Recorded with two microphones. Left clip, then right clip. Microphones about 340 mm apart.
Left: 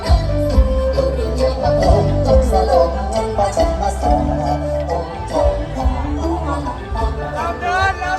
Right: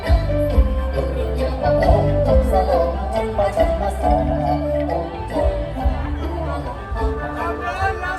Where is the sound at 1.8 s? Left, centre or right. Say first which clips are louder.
Left 1 dB; left.